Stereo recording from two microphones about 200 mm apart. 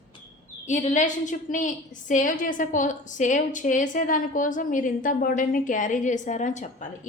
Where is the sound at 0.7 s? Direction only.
35° left (ahead or behind).